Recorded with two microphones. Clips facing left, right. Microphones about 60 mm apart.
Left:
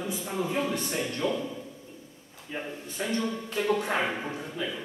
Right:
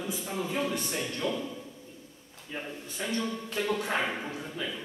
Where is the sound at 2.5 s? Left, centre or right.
Centre.